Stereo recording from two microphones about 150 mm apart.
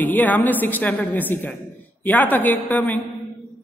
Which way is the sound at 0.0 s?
10° left (ahead or behind).